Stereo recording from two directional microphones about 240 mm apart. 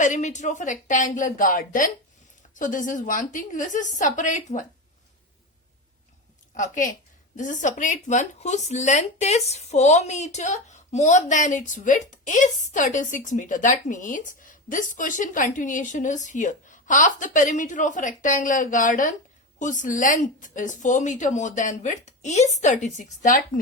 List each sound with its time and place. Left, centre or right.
0.0 s speech: left
6.5 s a woman's voice: left